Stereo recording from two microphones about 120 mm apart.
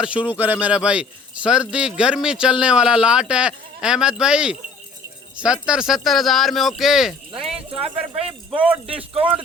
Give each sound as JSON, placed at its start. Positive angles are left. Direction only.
{"t": 0.0, "sound": "speech", "side_deg": -10}
{"t": 7.5, "sound": "speech", "side_deg": -55}